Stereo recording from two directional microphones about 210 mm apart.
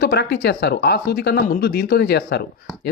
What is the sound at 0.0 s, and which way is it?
Speech, 50° left (ahead or behind).